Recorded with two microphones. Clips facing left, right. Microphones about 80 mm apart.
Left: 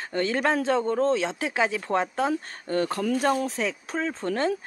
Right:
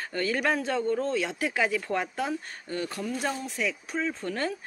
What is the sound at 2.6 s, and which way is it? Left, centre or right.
Speech, left.